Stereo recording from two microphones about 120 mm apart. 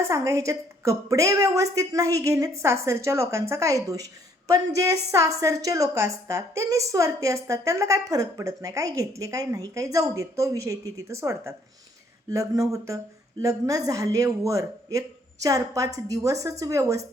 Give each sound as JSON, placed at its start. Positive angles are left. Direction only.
{"t": 0.0, "sound": "a woman's voice", "side_deg": -25}